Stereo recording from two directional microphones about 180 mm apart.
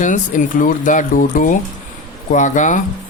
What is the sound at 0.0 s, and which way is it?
Speech, 45° left (ahead or behind).